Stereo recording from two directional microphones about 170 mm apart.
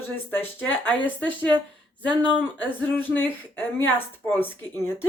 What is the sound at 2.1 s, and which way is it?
Speech, 25° right (ahead or behind).